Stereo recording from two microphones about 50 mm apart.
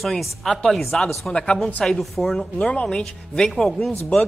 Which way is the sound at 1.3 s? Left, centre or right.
Centre.